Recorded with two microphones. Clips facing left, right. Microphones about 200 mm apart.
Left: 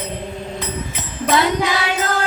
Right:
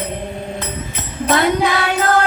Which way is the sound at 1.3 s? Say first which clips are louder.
Right 2 dB; 55° right (ahead or behind).